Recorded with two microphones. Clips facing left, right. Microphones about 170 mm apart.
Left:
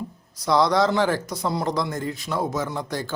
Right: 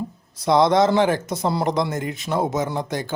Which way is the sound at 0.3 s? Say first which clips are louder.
Right 3 dB; 25° right (ahead or behind).